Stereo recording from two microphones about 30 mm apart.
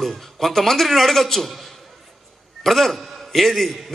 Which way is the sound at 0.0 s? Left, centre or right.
Centre.